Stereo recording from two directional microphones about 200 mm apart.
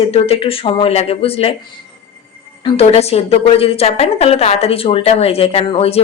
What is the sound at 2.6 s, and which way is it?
A woman's voice, 25° left (ahead or behind).